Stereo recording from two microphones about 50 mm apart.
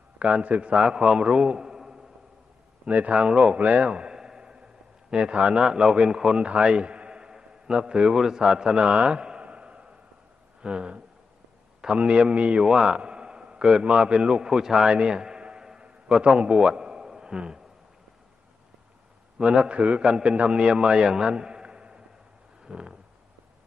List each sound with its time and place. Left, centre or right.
0.2 s a man's voice: right
0.7 s a man's voice: centre
2.9 s a man's voice: right; by 14.9 s centre
14.9 s a sound: centre
19.3 s a man's voice: centre